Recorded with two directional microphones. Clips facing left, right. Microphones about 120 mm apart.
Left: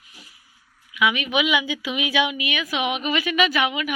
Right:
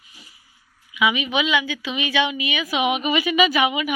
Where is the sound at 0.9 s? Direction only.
Centre (ahead or behind).